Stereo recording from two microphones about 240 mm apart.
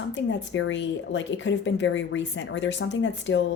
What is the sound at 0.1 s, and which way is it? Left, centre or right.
Speech, left.